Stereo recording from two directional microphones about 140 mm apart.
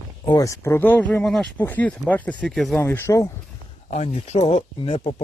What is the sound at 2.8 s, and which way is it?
Speech, 15° left (ahead or behind).